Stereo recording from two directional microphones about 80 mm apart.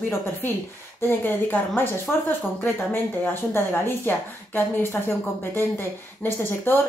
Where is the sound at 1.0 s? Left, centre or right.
Left.